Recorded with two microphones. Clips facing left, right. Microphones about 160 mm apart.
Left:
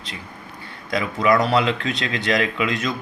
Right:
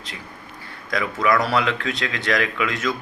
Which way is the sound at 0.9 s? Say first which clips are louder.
Left 2 dB; 20° left (ahead or behind).